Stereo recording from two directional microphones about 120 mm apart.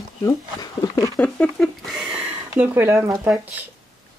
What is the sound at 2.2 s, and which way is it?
Speech, 15° right (ahead or behind).